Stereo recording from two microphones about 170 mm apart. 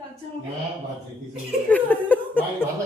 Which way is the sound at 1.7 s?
10° left (ahead or behind).